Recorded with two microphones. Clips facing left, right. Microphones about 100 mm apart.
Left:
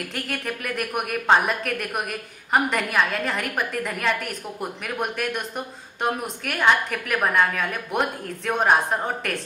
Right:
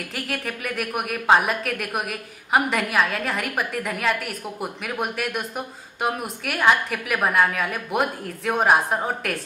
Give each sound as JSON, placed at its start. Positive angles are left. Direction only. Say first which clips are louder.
{"t": 0.1, "sound": "a woman's voice", "louder": "even", "side_deg": 0}